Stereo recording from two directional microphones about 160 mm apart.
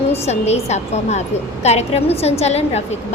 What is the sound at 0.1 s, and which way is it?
A woman's voice, 40° left (ahead or behind).